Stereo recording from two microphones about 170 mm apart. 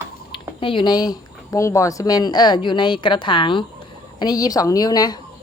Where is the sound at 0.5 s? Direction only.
30° left (ahead or behind).